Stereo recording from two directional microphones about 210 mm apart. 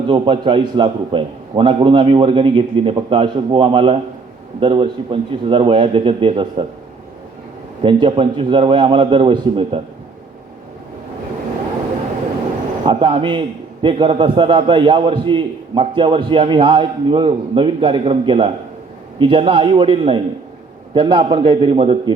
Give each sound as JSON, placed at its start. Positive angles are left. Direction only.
{"t": 0.1, "sound": "a man's voice", "side_deg": -25}
{"t": 7.8, "sound": "a man's voice", "side_deg": -25}
{"t": 12.8, "sound": "a man's voice", "side_deg": -25}